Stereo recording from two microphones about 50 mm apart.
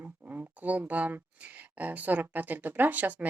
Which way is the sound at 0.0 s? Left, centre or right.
Right.